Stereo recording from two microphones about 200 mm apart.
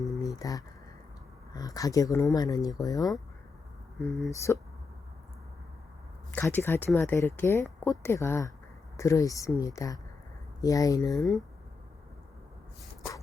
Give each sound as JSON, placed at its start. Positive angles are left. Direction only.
{"t": 0.0, "sound": "a sound", "side_deg": 15}
{"t": 1.5, "sound": "speech", "side_deg": 15}
{"t": 4.3, "sound": "speech", "side_deg": 15}
{"t": 6.3, "sound": "speech", "side_deg": 10}
{"t": 11.1, "sound": "speech", "side_deg": 0}